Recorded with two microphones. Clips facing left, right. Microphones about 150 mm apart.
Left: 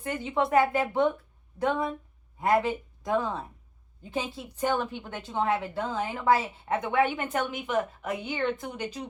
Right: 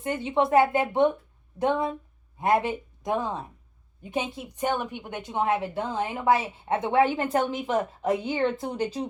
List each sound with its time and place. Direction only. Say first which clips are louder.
0.0 s a woman's voice: right 3 dB; 25° right (ahead or behind)